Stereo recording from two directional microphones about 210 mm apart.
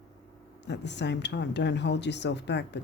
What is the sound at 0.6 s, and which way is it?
Speech, 55° left (ahead or behind).